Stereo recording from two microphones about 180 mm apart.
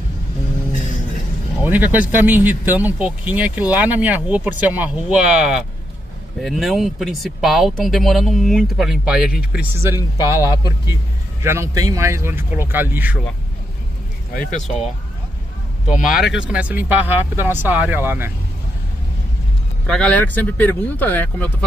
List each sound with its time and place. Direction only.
1.6 s speech: 10° right (ahead or behind)
15.9 s speech: centre (ahead or behind)
19.9 s speech: 5° left (ahead or behind)